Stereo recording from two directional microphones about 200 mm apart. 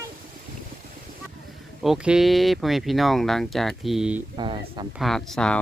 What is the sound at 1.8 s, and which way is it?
Speech, 5° right (ahead or behind).